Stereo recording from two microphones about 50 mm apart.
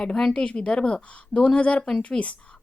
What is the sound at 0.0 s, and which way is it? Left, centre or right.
A woman's voice, centre.